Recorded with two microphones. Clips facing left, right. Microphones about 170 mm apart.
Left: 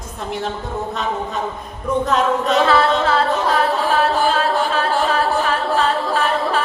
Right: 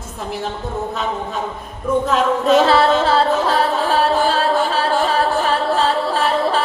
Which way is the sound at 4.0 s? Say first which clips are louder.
Right 2 dB; 30° right (ahead or behind).